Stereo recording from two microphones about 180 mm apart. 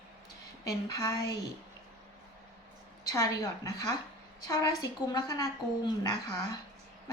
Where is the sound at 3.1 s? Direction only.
20° left (ahead or behind).